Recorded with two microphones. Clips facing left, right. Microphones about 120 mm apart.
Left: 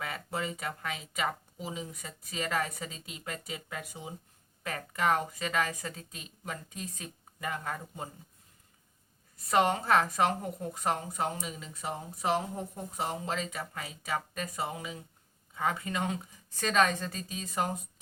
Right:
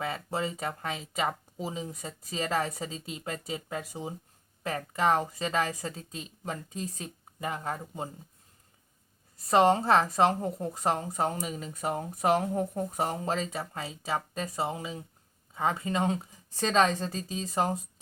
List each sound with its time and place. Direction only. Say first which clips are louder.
0.0 s a woman's voice: right 4 dB; 30° right (ahead or behind)
9.5 s a woman's voice: right 4 dB; 30° right (ahead or behind)